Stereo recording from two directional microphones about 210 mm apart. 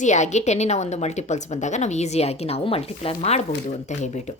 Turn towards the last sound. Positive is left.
turn(degrees=35)  # may be behind; listen again after turning